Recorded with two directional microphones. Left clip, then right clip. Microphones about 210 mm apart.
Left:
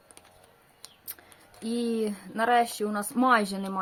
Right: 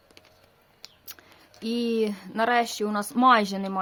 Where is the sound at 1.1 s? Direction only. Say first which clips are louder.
Right 2 dB; 40° right (ahead or behind).